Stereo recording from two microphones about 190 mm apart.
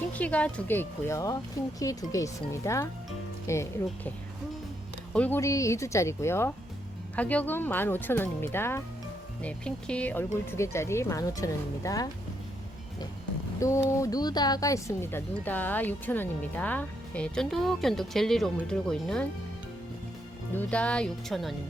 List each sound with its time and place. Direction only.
0.1 s speech: 5° left (ahead or behind)
5.1 s speech: 10° left (ahead or behind)
13.6 s speech: 15° left (ahead or behind)
20.5 s speech: 10° left (ahead or behind)